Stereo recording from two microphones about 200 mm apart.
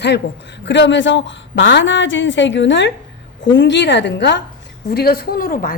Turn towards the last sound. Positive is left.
turn(degrees=45)  # may be behind; listen again after turning